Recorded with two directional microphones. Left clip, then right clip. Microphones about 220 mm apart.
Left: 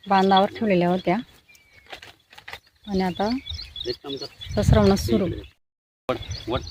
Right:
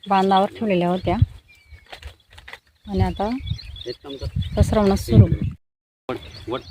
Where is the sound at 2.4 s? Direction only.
5° left (ahead or behind).